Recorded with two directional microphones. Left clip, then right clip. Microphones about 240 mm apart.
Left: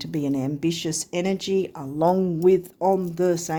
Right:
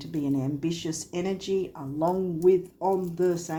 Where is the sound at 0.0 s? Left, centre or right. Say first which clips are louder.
Left 3 dB; left.